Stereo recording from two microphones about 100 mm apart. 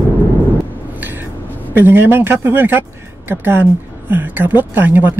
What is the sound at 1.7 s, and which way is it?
Speech, 20° right (ahead or behind).